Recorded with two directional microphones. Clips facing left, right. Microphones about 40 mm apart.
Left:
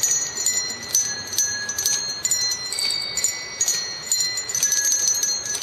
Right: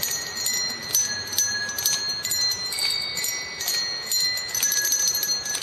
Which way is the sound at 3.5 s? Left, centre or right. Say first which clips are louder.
Right 1 dB; centre.